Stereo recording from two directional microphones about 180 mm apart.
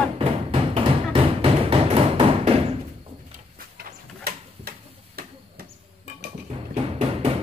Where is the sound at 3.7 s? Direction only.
55° right (ahead or behind).